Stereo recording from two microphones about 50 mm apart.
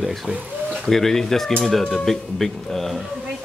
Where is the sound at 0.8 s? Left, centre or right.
Centre.